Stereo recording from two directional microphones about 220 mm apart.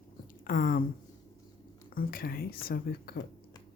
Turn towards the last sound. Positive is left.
turn(degrees=45)  # may be behind; listen again after turning